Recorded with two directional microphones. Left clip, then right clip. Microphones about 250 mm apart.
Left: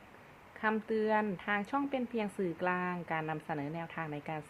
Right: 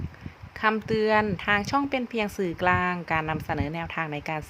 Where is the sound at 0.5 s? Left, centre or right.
Right.